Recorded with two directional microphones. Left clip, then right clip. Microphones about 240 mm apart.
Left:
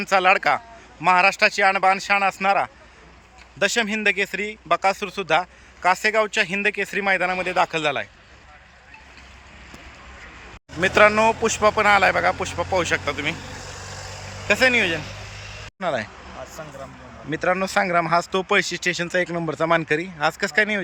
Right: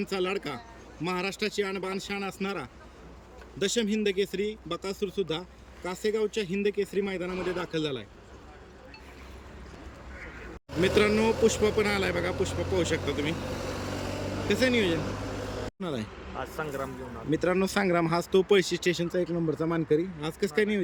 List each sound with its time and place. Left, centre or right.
0.0 s speech: centre
10.8 s speech: centre
13.4 s vehicle: right
14.4 s speech: centre
17.2 s speech: centre